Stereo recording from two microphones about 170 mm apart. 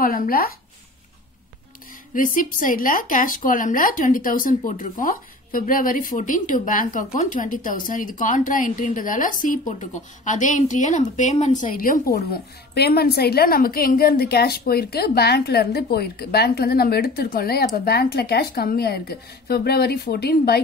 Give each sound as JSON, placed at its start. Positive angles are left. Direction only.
{"t": 0.0, "sound": "a woman's voice", "side_deg": 60}
{"t": 2.1, "sound": "a woman's voice", "side_deg": 50}